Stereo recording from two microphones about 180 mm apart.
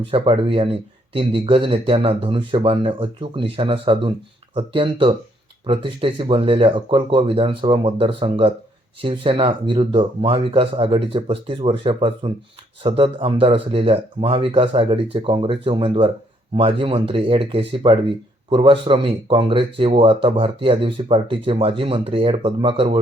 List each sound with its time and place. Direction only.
0.0 s speech: 30° right (ahead or behind)